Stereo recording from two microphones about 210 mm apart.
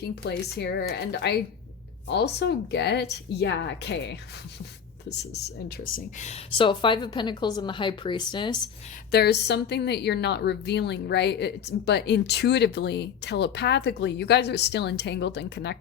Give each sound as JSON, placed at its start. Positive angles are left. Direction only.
{"t": 0.0, "sound": "a woman's voice", "side_deg": 50}
{"t": 9.1, "sound": "a woman's voice", "side_deg": 50}